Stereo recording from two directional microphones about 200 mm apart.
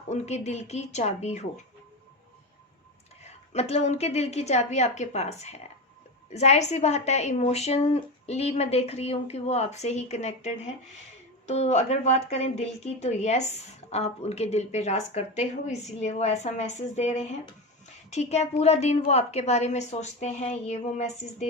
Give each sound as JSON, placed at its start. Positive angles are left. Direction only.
{"t": 0.1, "sound": "a woman's voice", "side_deg": 35}
{"t": 3.5, "sound": "a woman's voice", "side_deg": 30}